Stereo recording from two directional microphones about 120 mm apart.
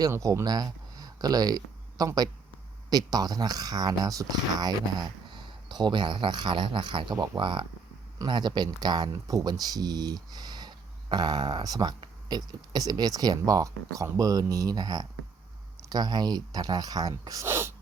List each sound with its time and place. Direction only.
0.0 s speech: 30° right (ahead or behind)